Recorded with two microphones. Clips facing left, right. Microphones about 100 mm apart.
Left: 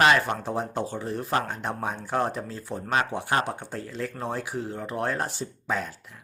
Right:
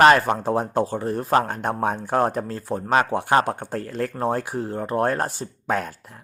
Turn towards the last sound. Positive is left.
turn(degrees=-50)  # may be behind; listen again after turning